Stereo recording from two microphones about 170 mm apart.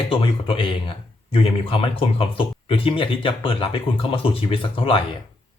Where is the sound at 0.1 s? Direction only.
30° left (ahead or behind).